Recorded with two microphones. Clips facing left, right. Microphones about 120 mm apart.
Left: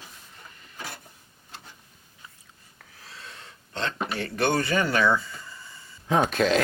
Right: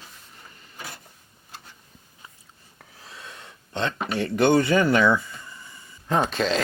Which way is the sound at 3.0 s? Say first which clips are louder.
Right 2 dB; 25° right (ahead or behind).